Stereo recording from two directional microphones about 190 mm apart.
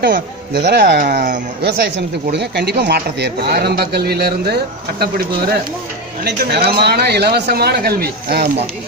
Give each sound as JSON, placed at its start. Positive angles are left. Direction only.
{"t": 0.1, "sound": "speech", "side_deg": -60}
{"t": 1.0, "sound": "speech", "side_deg": -40}
{"t": 1.6, "sound": "speech", "side_deg": -60}